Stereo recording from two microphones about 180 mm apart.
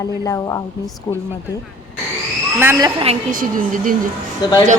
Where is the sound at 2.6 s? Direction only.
10° right (ahead or behind).